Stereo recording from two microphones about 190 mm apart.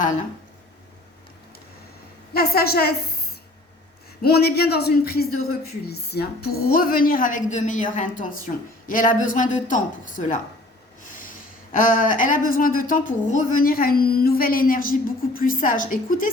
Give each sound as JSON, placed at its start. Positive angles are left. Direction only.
{"t": 2.3, "sound": "a woman's voice", "side_deg": 55}
{"t": 4.2, "sound": "speech", "side_deg": 55}
{"t": 11.7, "sound": "speech", "side_deg": 45}